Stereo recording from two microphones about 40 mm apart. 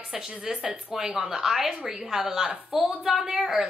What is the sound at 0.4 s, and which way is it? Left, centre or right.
A woman's voice, centre.